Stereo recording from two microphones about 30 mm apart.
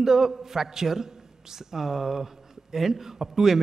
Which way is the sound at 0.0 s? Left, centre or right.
Centre.